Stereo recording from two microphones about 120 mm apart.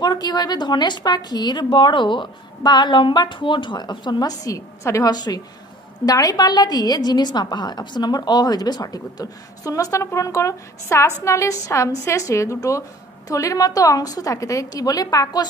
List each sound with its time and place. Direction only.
0.0 s a woman's voice: 35° left (ahead or behind)